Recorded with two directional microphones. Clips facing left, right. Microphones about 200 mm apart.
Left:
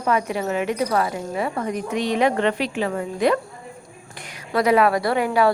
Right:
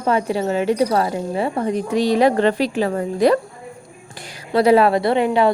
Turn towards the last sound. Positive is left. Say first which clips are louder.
# right 3 dB
turn(degrees=-25)  # may be behind; listen again after turning